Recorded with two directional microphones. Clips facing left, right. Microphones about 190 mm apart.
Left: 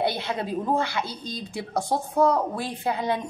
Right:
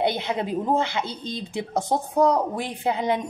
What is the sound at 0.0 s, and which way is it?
Speech, 20° right (ahead or behind).